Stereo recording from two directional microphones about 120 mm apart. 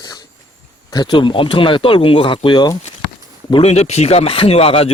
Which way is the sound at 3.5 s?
55° left (ahead or behind).